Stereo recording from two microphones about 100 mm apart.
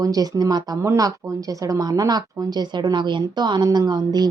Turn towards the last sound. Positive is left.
turn(degrees=-45)  # may be behind; listen again after turning